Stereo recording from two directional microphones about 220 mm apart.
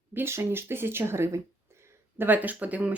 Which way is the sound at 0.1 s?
10° right (ahead or behind).